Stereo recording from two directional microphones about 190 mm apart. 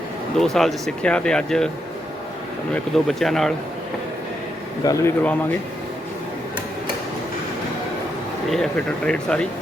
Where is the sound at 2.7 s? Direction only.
Centre (ahead or behind).